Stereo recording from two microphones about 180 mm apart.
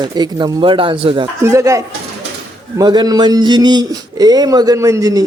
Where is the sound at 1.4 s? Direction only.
15° right (ahead or behind).